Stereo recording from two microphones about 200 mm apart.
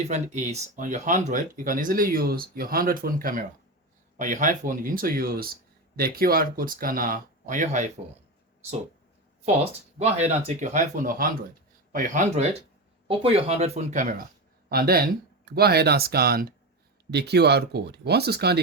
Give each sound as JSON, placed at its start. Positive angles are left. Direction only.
{"t": 0.1, "sound": "speech", "side_deg": -35}
{"t": 10.0, "sound": "speech", "side_deg": -35}